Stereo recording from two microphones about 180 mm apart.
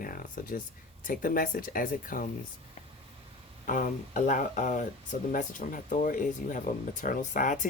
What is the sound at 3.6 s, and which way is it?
Speech, 50° left (ahead or behind).